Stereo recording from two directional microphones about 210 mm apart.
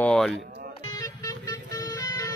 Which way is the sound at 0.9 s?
20° left (ahead or behind).